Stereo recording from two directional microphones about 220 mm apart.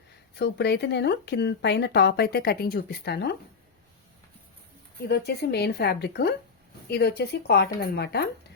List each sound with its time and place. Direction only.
0.3 s speech: 50° left (ahead or behind)
5.0 s speech: 45° left (ahead or behind)